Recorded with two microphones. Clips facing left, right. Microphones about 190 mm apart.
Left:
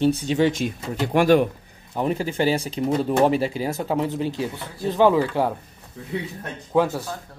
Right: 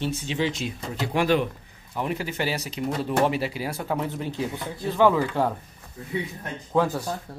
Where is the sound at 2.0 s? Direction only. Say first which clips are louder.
Left 5 dB; 30° left (ahead or behind).